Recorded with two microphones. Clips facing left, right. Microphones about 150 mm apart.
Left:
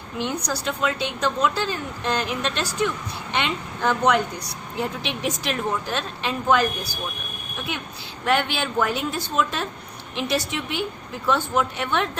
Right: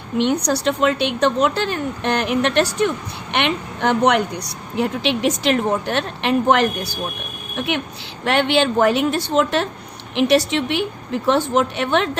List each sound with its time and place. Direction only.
0.2 s a woman's voice: 70° right (ahead or behind); by 12.0 s 90° right